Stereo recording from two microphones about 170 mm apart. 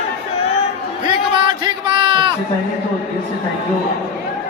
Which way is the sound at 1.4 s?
30° right (ahead or behind).